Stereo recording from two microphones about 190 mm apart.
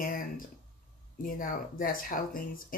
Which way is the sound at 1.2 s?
45° left (ahead or behind).